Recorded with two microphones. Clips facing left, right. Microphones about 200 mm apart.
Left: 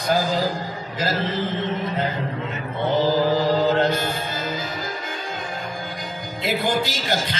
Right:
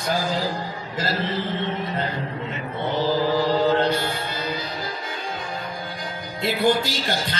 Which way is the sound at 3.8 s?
45° left (ahead or behind).